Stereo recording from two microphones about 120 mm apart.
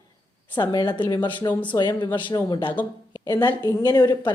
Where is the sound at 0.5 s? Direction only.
40° left (ahead or behind).